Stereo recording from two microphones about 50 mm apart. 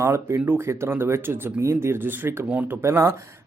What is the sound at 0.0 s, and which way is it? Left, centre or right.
Speech, right.